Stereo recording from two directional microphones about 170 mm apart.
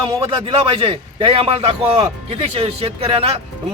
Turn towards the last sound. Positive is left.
turn(degrees=-30)  # may be behind; listen again after turning